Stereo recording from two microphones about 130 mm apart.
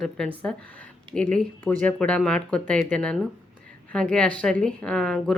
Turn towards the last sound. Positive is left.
turn(degrees=5)  # may be behind; listen again after turning